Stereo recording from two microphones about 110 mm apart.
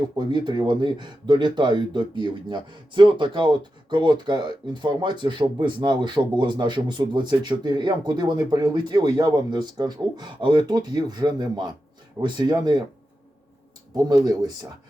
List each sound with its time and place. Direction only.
0.2 s speech: 45° right (ahead or behind)
13.9 s speech: 35° right (ahead or behind)